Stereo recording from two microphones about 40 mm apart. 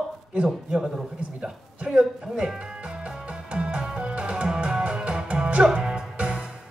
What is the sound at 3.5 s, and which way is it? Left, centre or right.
Music, right.